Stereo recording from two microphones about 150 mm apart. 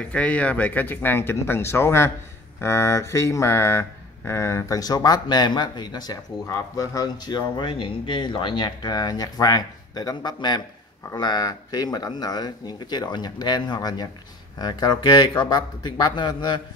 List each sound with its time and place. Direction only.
0.1 s speech: 10° left (ahead or behind); by 16.6 s 30° left (ahead or behind)